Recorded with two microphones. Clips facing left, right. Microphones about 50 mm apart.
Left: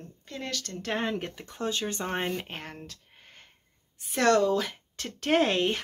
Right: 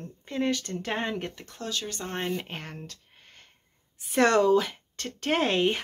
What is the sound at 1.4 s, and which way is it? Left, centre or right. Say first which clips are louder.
Speech: left 3 dB; left.